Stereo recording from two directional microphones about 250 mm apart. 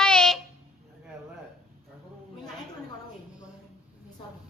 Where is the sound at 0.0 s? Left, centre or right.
Centre.